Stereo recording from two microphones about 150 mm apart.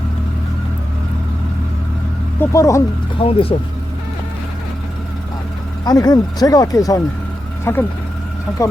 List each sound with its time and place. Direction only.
2.4 s speech: 20° left (ahead or behind)
3.2 s speech: 40° left (ahead or behind)
5.8 s speech: 25° left (ahead or behind)